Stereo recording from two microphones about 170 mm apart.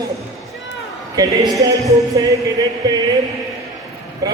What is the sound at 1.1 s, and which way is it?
Speech, 20° right (ahead or behind).